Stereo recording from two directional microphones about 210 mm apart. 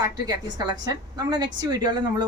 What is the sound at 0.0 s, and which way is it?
A woman's voice, 20° right (ahead or behind).